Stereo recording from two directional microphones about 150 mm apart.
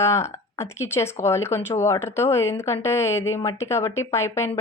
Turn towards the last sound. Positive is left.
turn(degrees=20)  # may be behind; listen again after turning